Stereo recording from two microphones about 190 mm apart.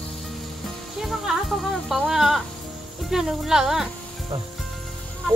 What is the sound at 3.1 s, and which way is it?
Speech, centre (ahead or behind).